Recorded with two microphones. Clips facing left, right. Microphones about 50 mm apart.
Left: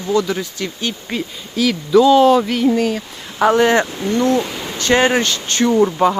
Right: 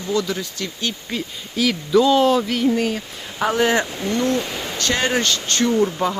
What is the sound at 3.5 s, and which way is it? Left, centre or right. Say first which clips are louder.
Speech: left 3 dB; left.